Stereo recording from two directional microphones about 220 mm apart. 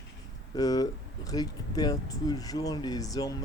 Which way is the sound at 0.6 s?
15° left (ahead or behind).